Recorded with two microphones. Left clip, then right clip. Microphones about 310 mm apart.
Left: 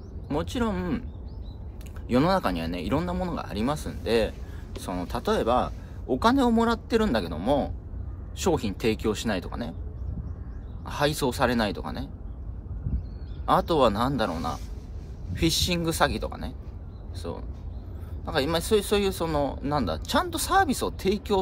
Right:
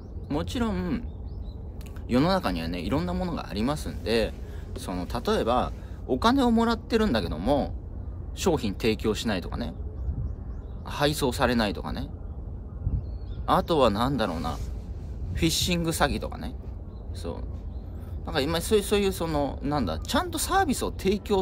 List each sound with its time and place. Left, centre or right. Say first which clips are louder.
0.3 s speech: left 1 dB; centre
2.0 s speech: left 1 dB; centre
10.9 s speech: even; centre
13.5 s speech: left 1 dB; centre